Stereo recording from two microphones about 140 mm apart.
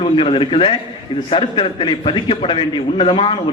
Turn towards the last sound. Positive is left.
turn(degrees=40)  # may be behind; listen again after turning